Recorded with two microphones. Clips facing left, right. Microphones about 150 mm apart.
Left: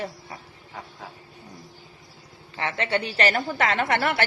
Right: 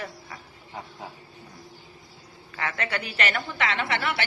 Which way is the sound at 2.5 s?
25° left (ahead or behind).